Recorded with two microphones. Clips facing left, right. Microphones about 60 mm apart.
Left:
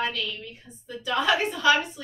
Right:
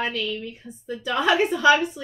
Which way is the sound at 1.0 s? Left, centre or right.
Centre.